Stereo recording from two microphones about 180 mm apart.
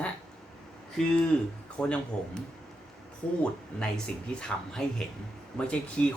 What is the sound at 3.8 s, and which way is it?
Speech, 5° left (ahead or behind).